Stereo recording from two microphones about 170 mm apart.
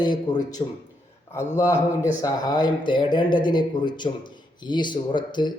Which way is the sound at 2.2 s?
25° left (ahead or behind).